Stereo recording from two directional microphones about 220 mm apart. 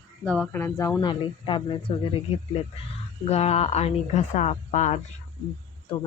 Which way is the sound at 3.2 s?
30° left (ahead or behind).